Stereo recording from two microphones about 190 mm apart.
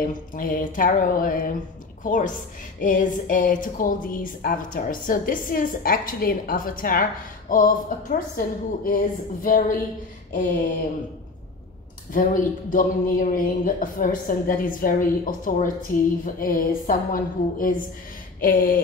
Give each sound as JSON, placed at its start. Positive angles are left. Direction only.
{"t": 0.0, "sound": "a woman's voice", "side_deg": 45}
{"t": 12.1, "sound": "a woman's voice", "side_deg": 45}